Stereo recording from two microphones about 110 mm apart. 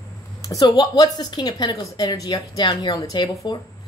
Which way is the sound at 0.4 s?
35° left (ahead or behind).